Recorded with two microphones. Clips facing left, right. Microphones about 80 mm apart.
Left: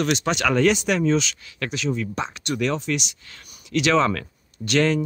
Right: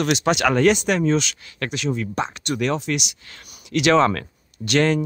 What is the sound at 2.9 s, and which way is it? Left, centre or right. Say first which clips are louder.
Speech: right 1 dB; right.